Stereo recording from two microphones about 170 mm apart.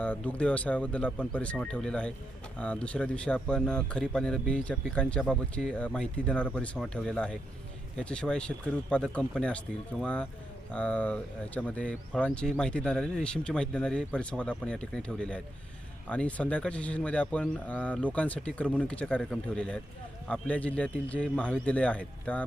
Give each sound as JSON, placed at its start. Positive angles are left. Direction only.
{"t": 0.0, "sound": "speech", "side_deg": 10}